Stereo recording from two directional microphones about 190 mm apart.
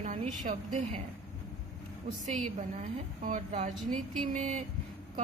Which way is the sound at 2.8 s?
40° right (ahead or behind).